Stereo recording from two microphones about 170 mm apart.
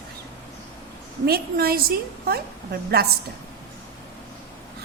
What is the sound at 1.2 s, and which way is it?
A woman's voice, 65° right (ahead or behind).